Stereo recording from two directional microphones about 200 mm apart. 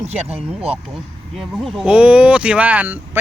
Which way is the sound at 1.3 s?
Centre (ahead or behind).